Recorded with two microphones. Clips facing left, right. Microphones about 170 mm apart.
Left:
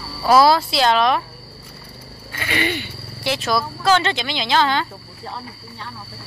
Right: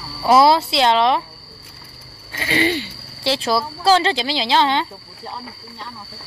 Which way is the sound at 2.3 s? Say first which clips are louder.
Right 4 dB; 30° right (ahead or behind).